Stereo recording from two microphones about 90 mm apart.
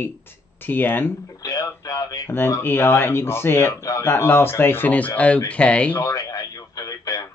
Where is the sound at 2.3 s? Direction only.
25° left (ahead or behind).